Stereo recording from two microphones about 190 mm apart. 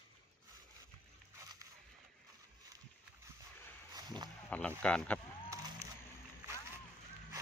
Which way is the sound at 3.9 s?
20° right (ahead or behind).